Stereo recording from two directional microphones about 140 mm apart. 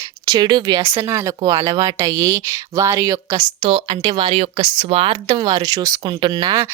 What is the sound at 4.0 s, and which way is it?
Speech, 25° right (ahead or behind).